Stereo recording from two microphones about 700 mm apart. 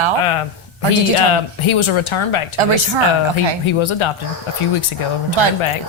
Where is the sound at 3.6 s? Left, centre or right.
Left.